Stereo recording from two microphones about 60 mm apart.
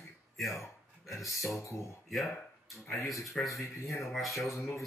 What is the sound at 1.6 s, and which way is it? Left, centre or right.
Speech, left.